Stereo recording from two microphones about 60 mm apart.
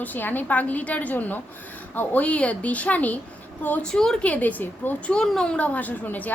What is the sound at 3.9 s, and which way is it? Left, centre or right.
Speech, centre.